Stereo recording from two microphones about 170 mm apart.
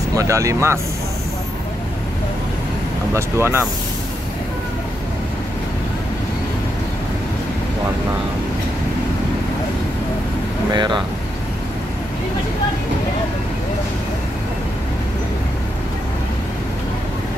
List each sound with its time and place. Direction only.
0.1 s speech: 20° right (ahead or behind)
3.1 s speech: 15° right (ahead or behind)
10.7 s speech: 25° right (ahead or behind)